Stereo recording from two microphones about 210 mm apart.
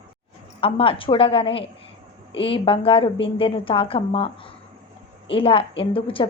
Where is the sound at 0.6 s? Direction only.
25° left (ahead or behind).